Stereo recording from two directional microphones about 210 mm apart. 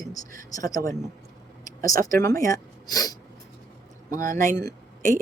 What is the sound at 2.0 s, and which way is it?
Speech, 15° left (ahead or behind).